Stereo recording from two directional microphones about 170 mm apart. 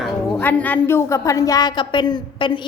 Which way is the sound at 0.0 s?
10° left (ahead or behind).